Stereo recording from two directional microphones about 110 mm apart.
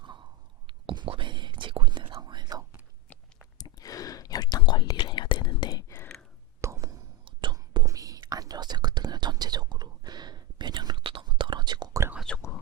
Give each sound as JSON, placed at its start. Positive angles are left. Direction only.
{"t": 0.7, "sound": "whispering", "side_deg": -50}
{"t": 3.6, "sound": "whispering", "side_deg": 35}
{"t": 6.0, "sound": "whispering", "side_deg": 10}
{"t": 6.6, "sound": "whispering", "side_deg": -25}
{"t": 7.5, "sound": "whispering", "side_deg": -35}
{"t": 12.3, "sound": "whispering", "side_deg": 10}